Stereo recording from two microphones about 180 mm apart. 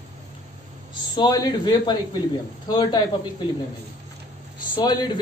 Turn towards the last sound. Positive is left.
turn(degrees=20)  # may be behind; listen again after turning